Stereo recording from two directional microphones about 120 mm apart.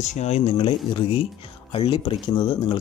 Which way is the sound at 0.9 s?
50° left (ahead or behind).